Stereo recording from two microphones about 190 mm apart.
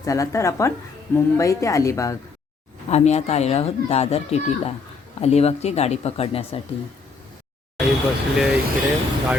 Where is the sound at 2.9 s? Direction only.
35° left (ahead or behind).